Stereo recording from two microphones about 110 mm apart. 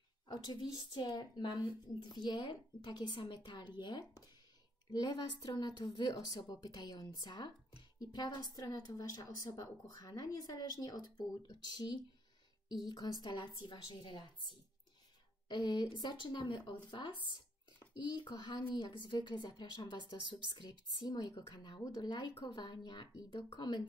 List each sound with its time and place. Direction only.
0.3 s a woman's voice: 40° left (ahead or behind)
15.4 s a woman's voice: 40° left (ahead or behind)